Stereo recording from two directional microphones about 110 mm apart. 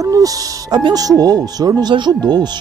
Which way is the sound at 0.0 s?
35° right (ahead or behind).